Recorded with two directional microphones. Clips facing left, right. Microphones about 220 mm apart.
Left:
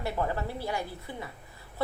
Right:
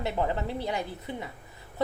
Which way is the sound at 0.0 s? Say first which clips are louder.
Right 2 dB; 20° right (ahead or behind).